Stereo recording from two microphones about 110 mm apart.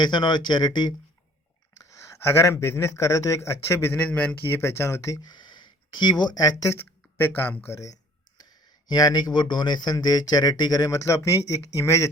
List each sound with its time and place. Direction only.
0.0 s speech: 45° left (ahead or behind)
2.2 s a man's voice: 25° left (ahead or behind)
5.3 s speech: 45° left (ahead or behind)
6.7 s speech: 20° left (ahead or behind)
8.9 s speech: 40° left (ahead or behind)